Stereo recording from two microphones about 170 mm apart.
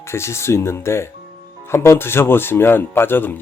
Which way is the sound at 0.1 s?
15° left (ahead or behind).